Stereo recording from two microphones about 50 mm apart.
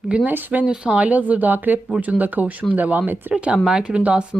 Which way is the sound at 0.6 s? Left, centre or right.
Centre.